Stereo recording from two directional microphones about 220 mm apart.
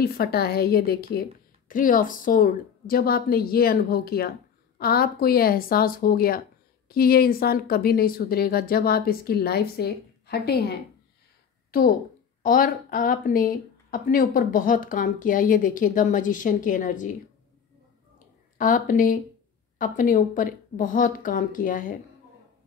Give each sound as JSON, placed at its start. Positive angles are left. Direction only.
{"t": 0.0, "sound": "speech", "side_deg": 45}
{"t": 12.4, "sound": "speech", "side_deg": 40}
{"t": 18.6, "sound": "speech", "side_deg": 40}